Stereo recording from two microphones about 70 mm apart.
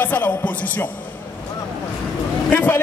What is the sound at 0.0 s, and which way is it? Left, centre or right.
Speech, left.